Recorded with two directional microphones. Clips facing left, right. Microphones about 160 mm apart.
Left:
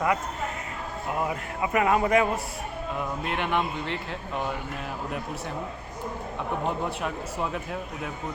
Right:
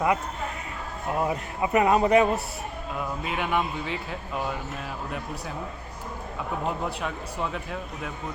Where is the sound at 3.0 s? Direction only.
5° right (ahead or behind).